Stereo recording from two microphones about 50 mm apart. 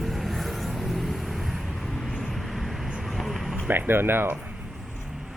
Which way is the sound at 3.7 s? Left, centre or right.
Right.